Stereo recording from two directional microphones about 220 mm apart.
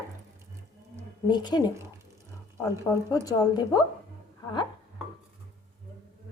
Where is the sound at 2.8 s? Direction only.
15° left (ahead or behind).